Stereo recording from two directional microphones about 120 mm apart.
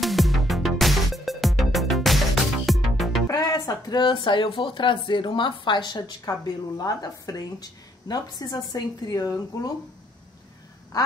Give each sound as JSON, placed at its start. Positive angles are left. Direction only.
{"t": 0.0, "sound": "music", "side_deg": 0}
{"t": 3.3, "sound": "speech", "side_deg": 30}